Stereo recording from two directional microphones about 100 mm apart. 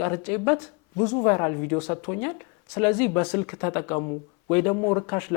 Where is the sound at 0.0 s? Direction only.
20° left (ahead or behind).